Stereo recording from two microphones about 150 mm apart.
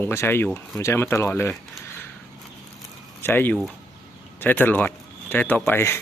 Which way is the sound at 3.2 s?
15° left (ahead or behind).